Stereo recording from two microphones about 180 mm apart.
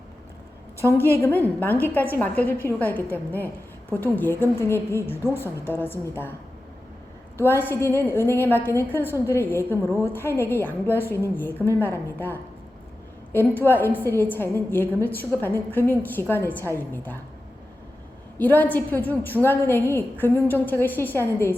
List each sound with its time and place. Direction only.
1.2 s a woman's voice: 10° left (ahead or behind)
5.2 s a woman's voice: 15° right (ahead or behind)
5.6 s a woman's voice: 10° left (ahead or behind)
7.3 s a woman's voice: 10° left (ahead or behind)
9.8 s a woman's voice: 15° right (ahead or behind)
10.1 s a woman's voice: 15° left (ahead or behind)
18.3 s a woman's voice: 10° left (ahead or behind)